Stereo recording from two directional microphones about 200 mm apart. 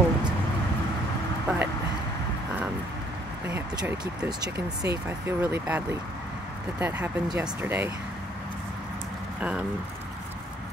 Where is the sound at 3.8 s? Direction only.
20° right (ahead or behind).